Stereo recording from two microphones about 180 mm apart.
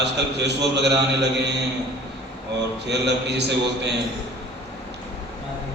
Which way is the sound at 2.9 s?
70° right (ahead or behind).